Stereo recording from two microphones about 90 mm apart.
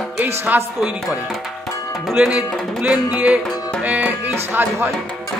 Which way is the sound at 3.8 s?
20° right (ahead or behind).